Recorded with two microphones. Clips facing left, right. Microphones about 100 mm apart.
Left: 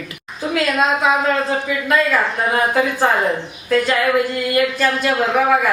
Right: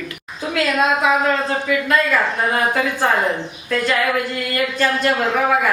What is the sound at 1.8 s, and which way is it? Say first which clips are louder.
Speech: left 3 dB; 5° left (ahead or behind).